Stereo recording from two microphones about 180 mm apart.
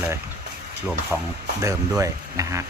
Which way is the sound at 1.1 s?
10° right (ahead or behind).